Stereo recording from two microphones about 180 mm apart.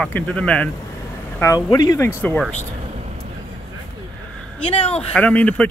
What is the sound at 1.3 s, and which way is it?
Speech, 20° left (ahead or behind).